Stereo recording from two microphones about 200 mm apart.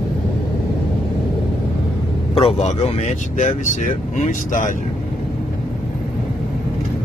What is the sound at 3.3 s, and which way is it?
Speech, 40° left (ahead or behind).